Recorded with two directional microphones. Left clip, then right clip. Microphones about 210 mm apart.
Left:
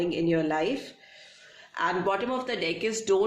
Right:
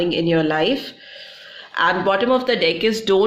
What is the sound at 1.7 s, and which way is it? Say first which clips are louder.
Speech: right 10 dB; 35° right (ahead or behind).